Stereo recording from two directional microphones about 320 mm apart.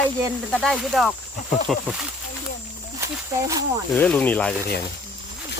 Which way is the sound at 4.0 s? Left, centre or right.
Centre.